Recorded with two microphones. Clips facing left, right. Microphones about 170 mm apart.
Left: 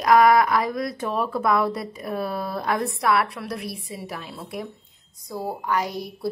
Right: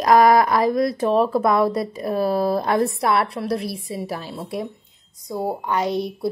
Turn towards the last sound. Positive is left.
turn(degrees=-25)  # may be behind; listen again after turning